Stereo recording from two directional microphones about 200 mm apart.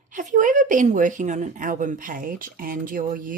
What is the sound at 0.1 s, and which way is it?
A woman's voice, 40° right (ahead or behind).